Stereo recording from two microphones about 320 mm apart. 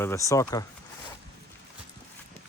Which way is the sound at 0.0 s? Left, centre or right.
Centre.